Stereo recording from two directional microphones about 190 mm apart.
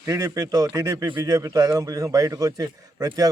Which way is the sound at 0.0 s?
15° right (ahead or behind).